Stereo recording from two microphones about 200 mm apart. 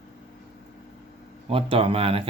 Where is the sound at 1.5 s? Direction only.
25° right (ahead or behind).